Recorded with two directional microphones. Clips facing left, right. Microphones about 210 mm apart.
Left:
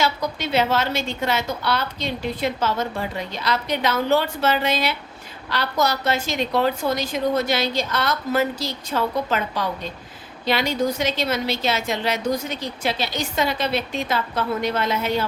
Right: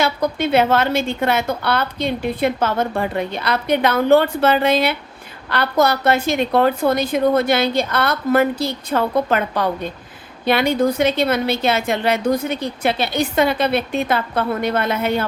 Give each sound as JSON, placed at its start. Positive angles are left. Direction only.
{"t": 0.0, "sound": "a woman's voice", "side_deg": -55}